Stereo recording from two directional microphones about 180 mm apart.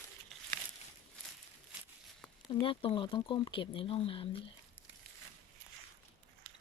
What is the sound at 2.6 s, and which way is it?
Speech, 30° left (ahead or behind).